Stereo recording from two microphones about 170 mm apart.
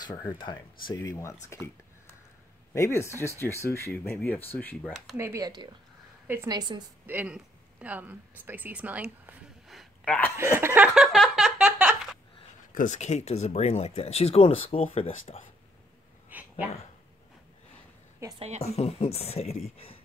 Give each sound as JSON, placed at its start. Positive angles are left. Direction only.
{"t": 0.0, "sound": "speech", "side_deg": 20}
{"t": 2.7, "sound": "speech", "side_deg": 15}
{"t": 5.1, "sound": "speech", "side_deg": -15}
{"t": 6.2, "sound": "a woman's voice", "side_deg": -10}
{"t": 10.3, "sound": "a sound", "side_deg": -15}
{"t": 12.7, "sound": "speech", "side_deg": 45}
{"t": 16.3, "sound": "a sound", "side_deg": -10}
{"t": 18.2, "sound": "a woman's voice", "side_deg": -15}
{"t": 18.6, "sound": "speech", "side_deg": 35}